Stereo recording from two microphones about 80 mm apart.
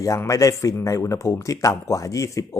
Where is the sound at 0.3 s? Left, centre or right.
Left.